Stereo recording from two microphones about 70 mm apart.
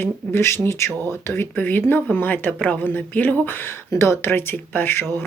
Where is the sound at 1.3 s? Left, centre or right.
Left.